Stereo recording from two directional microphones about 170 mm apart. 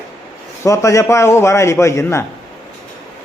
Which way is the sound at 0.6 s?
20° left (ahead or behind).